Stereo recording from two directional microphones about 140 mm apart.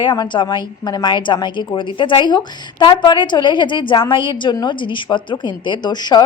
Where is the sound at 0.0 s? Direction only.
35° left (ahead or behind).